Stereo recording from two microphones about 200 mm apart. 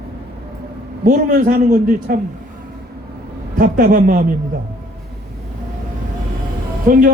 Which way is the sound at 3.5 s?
45° right (ahead or behind).